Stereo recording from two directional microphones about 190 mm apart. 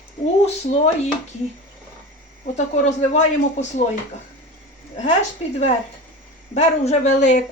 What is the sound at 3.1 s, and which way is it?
Speech, 40° left (ahead or behind).